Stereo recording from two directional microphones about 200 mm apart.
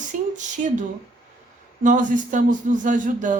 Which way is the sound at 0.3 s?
40° right (ahead or behind).